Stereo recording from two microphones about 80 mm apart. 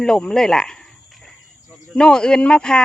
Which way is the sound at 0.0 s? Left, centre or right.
Centre.